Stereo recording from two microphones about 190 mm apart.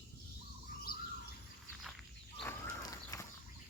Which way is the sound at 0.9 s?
50° left (ahead or behind).